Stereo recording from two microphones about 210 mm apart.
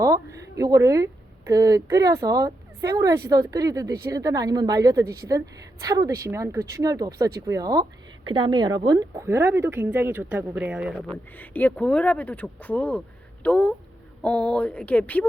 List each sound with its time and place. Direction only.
0.0 s speech: 15° right (ahead or behind)
11.1 s speech: 10° left (ahead or behind)